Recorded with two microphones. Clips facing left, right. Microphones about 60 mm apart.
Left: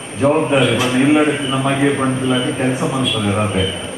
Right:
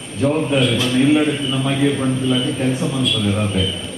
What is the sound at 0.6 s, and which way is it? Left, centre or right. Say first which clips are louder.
A man's voice: left 2 dB; left.